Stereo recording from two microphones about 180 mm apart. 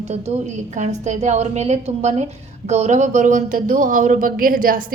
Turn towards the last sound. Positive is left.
turn(degrees=-50)  # may be behind; listen again after turning